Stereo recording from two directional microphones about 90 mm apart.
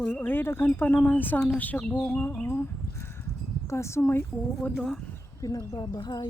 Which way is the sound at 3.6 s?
30° left (ahead or behind).